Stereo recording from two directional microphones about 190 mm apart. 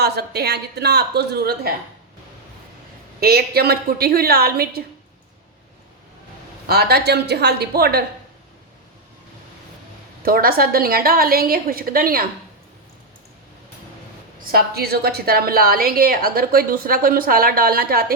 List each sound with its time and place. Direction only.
0.0 s a woman's voice: 60° right (ahead or behind)
3.2 s a woman's voice: 55° right (ahead or behind)
6.7 s a woman's voice: 55° right (ahead or behind)
10.2 s a woman's voice: 50° right (ahead or behind)
14.5 s a woman's voice: 55° right (ahead or behind)